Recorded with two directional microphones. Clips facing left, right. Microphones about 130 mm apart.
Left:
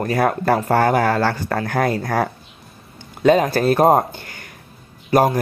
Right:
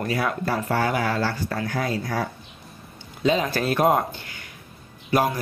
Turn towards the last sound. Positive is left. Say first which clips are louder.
# left 6 dB
turn(degrees=45)  # may be behind; listen again after turning